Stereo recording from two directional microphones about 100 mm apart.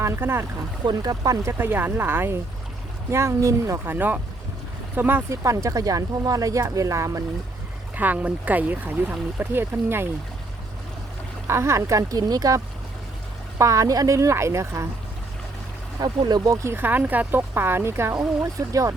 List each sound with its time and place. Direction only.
0.0 s speech: 25° right (ahead or behind)
0.9 s speech: 40° right (ahead or behind)
1.5 s speech: 20° right (ahead or behind)
5.4 s speech: 30° right (ahead or behind)
7.9 s speech: 15° right (ahead or behind)
11.4 s speech: 25° right (ahead or behind)
16.2 s speech: 40° right (ahead or behind)
16.6 s speech: 20° right (ahead or behind)
18.1 s speech: 35° right (ahead or behind)